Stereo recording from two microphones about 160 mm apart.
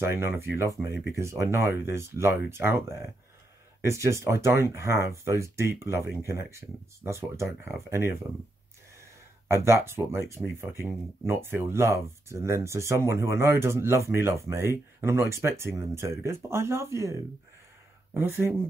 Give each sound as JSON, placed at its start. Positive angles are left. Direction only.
{"t": 0.0, "sound": "speech", "side_deg": -15}
{"t": 7.4, "sound": "speech", "side_deg": 0}
{"t": 9.5, "sound": "speech", "side_deg": -15}